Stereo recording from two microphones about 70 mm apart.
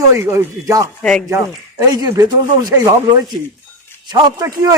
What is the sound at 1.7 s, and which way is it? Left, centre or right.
Speech, right.